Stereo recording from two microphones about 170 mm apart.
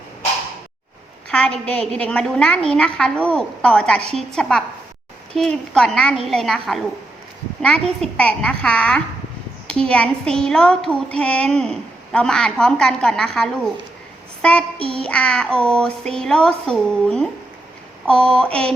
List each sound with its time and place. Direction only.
1.3 s a woman's voice: 5° left (ahead or behind)
14.8 s child singing: 30° right (ahead or behind)
15.0 s speech: 5° left (ahead or behind)